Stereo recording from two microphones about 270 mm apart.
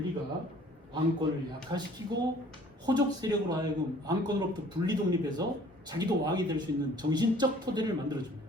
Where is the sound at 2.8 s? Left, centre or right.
Centre.